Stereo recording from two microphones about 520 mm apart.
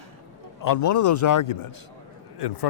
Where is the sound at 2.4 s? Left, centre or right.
Left.